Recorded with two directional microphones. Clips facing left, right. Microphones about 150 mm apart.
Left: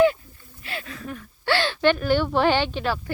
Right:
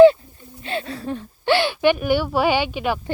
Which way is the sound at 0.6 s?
30° right (ahead or behind).